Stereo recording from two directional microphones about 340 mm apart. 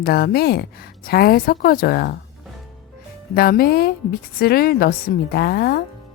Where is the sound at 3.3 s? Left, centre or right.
Left.